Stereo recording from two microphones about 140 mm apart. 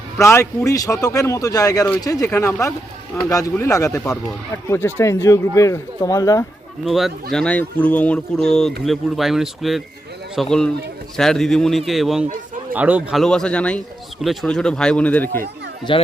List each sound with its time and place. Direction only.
0.2 s speech: 20° left (ahead or behind)
6.8 s speech: centre (ahead or behind)
13.1 s a man's voice: 5° left (ahead or behind)
15.9 s speech: 35° left (ahead or behind)